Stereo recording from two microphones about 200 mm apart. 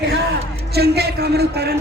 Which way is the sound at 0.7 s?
55° right (ahead or behind).